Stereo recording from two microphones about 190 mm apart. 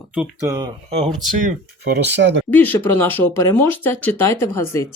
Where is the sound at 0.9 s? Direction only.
35° right (ahead or behind).